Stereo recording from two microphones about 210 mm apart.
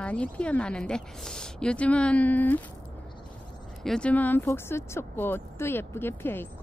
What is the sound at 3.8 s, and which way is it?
Speech, 5° left (ahead or behind).